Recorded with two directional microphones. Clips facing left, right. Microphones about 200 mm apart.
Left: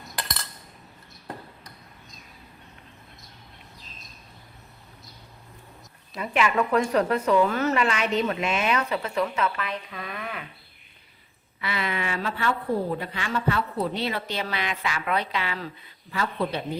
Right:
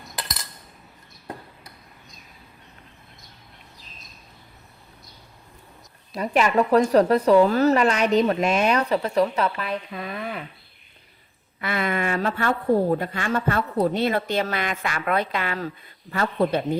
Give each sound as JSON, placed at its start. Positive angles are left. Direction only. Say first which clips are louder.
{"t": 0.0, "sound": "cutlery", "louder": "even", "side_deg": -5}
{"t": 6.1, "sound": "a woman's voice", "louder": "right 4 dB", "side_deg": -40}
{"t": 11.6, "sound": "speech", "louder": "right 5 dB", "side_deg": -50}